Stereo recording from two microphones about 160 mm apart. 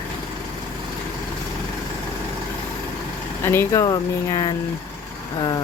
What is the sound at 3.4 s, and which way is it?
Speech, 15° left (ahead or behind).